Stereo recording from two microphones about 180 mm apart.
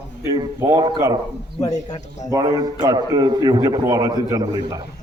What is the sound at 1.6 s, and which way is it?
Speech, 40° left (ahead or behind).